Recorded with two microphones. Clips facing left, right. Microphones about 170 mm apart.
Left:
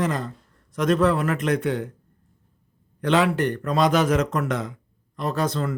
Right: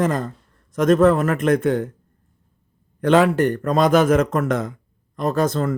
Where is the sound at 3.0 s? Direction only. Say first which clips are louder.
Right 5 dB; 50° right (ahead or behind).